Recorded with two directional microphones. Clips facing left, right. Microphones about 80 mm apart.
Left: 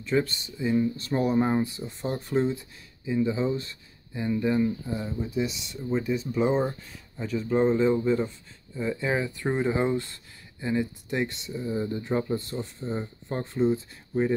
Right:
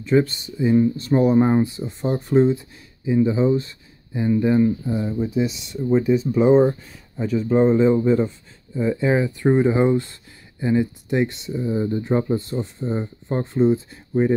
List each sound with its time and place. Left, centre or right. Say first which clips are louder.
0.0 s speech: right 7 dB; centre